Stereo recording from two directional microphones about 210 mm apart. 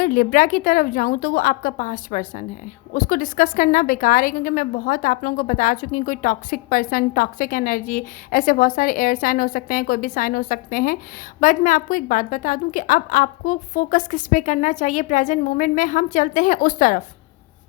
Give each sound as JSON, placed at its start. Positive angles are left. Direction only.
{"t": 0.0, "sound": "a woman's voice", "side_deg": 40}